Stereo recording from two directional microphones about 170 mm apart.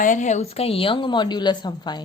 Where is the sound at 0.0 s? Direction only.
45° left (ahead or behind).